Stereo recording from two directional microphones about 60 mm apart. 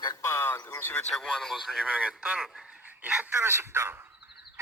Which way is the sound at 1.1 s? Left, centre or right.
Centre.